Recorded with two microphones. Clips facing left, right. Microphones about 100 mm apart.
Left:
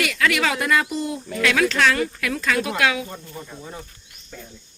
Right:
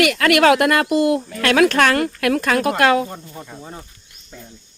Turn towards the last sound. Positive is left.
turn(degrees=-25)  # may be behind; listen again after turning